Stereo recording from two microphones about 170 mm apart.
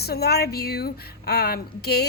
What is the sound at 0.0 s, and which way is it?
A woman's voice, 70° left (ahead or behind).